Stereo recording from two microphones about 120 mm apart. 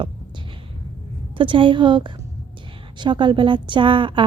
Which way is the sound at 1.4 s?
45° right (ahead or behind).